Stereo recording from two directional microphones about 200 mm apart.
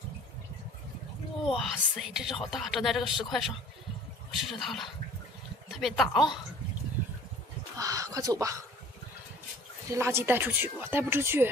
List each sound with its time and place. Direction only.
1.5 s speech: centre (ahead or behind)
7.7 s speech: 15° right (ahead or behind)
9.9 s speech: 10° right (ahead or behind)